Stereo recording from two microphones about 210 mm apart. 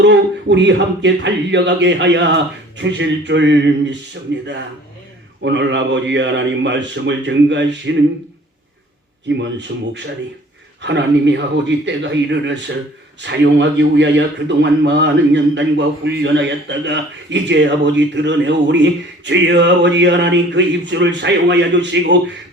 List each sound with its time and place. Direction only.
0.0 s a man's voice: 55° right (ahead or behind)
5.4 s a man's voice: 60° right (ahead or behind)
9.4 s a man's voice: 60° right (ahead or behind)